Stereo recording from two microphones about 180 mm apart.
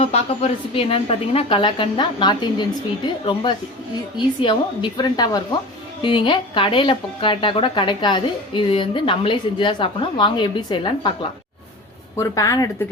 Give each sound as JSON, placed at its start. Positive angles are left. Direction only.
{"t": 0.0, "sound": "a woman's voice", "side_deg": 35}
{"t": 4.2, "sound": "a woman's voice", "side_deg": 25}